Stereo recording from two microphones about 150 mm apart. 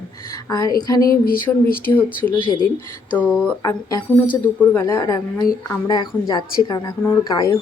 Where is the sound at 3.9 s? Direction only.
30° left (ahead or behind).